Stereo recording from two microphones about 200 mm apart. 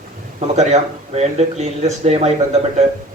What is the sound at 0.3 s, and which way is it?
Speech, 35° right (ahead or behind).